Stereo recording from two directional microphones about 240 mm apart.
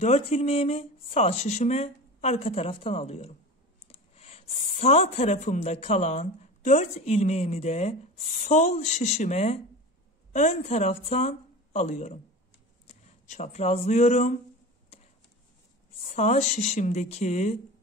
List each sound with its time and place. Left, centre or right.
0.0 s speech: left
16.0 s speech: left